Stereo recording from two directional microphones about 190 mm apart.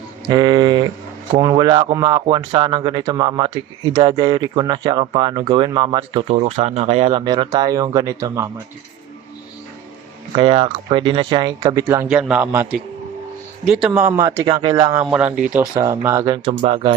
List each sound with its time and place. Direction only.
0.3 s speech: 20° right (ahead or behind)
6.2 s speech: 35° right (ahead or behind); by 8.4 s 20° right (ahead or behind)
10.3 s speech: 25° right (ahead or behind)
12.0 s a man's voice: 5° right (ahead or behind)
13.8 s speech: 5° right (ahead or behind); by 16.9 s 35° right (ahead or behind)